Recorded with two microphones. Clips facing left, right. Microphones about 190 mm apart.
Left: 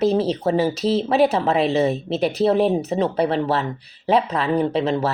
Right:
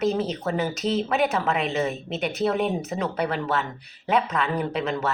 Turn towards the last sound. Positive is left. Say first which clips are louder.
# left 6 dB
turn(degrees=30)  # may be behind; listen again after turning